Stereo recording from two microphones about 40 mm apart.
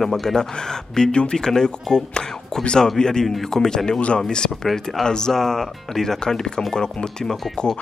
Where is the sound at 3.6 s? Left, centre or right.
Centre.